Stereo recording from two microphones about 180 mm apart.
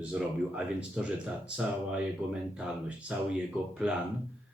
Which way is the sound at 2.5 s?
5° right (ahead or behind).